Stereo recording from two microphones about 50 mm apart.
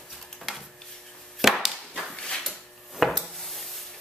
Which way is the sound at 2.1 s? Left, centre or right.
Centre.